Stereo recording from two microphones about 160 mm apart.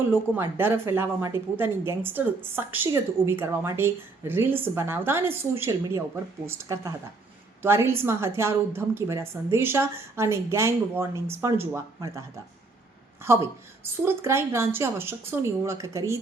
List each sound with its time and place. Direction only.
0.1 s a woman's voice: 15° right (ahead or behind)
13.2 s a woman's voice: 15° right (ahead or behind)